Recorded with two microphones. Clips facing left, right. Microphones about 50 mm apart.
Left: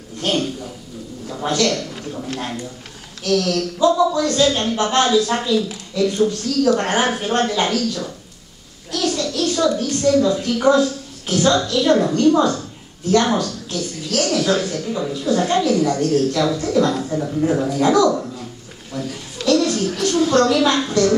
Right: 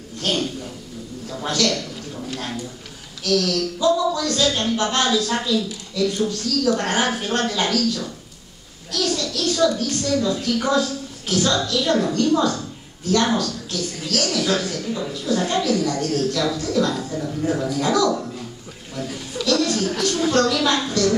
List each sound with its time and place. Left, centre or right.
0.2 s a man's voice: left
1.5 s a man's voice: left
3.3 s a woman's voice: left
19.4 s a sound: left
20.6 s a woman's voice: left